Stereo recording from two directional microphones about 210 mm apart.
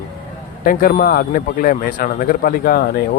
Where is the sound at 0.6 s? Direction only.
40° left (ahead or behind).